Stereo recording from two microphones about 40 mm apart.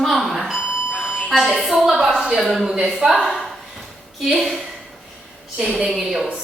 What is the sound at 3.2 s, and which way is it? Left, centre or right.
A woman's voice, centre.